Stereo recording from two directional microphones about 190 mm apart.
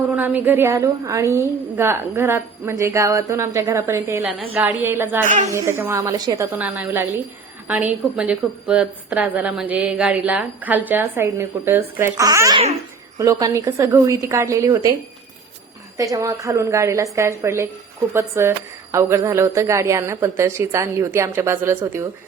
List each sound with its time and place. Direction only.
0.2 s a woman's voice: 10° right (ahead or behind)
16.0 s a woman's voice: 20° right (ahead or behind)